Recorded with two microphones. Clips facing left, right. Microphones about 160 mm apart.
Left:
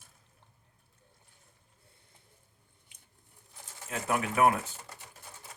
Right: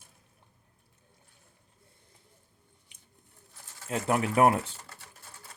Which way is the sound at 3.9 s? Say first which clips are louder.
Right 4 dB; 30° right (ahead or behind).